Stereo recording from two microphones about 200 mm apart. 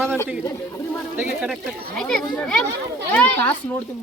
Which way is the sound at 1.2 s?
5° right (ahead or behind).